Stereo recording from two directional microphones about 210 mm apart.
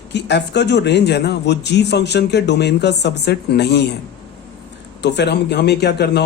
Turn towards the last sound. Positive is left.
turn(degrees=50)  # may be behind; listen again after turning